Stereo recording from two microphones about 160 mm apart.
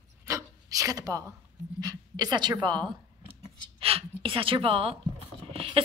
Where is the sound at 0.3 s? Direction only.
20° right (ahead or behind).